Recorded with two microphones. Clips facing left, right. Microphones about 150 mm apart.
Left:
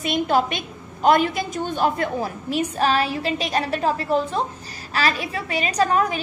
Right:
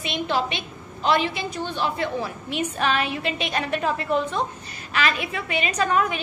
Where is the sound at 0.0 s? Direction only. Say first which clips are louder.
Left 5 dB; 45° left (ahead or behind).